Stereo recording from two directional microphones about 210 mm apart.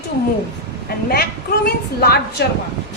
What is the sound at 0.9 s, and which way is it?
Speech, 45° left (ahead or behind).